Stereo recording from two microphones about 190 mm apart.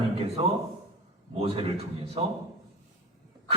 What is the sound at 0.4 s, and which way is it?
A man's voice, 30° right (ahead or behind).